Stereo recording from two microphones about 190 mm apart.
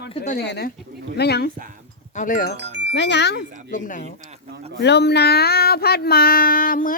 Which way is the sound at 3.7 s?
45° left (ahead or behind).